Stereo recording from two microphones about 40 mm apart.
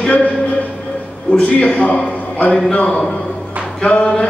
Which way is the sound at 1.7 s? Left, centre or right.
Left.